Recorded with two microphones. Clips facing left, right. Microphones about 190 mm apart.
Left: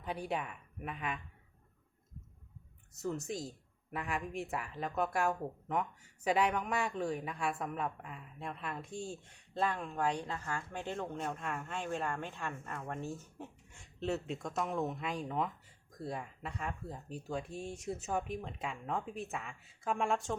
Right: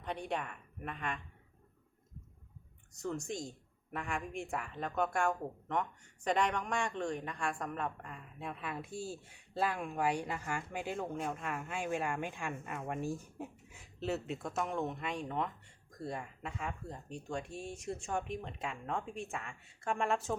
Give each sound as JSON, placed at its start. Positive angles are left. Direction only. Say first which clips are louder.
{"t": 0.0, "sound": "a woman's voice", "louder": "left 1 dB", "side_deg": 5}
{"t": 2.9, "sound": "a woman's voice", "louder": "left 1 dB", "side_deg": 5}